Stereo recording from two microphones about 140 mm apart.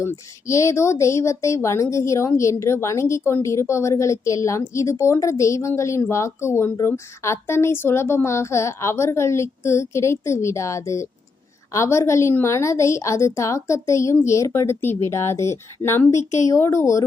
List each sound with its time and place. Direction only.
0.0 s speech: 20° left (ahead or behind)
16.1 s speech: 55° left (ahead or behind)
16.5 s speech: 20° left (ahead or behind)